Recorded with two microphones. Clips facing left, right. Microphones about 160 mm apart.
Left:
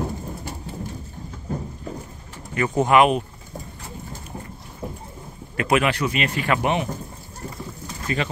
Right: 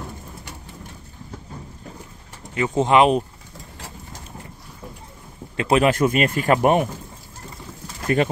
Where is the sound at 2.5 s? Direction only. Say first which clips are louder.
Even; 20° right (ahead or behind).